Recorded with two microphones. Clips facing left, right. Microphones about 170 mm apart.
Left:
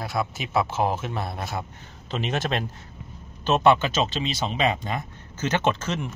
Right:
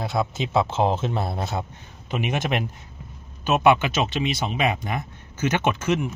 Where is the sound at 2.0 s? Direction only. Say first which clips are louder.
Right 2 dB; 15° right (ahead or behind).